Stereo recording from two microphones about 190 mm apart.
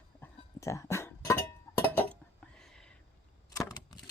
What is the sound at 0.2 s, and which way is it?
Music, 15° left (ahead or behind).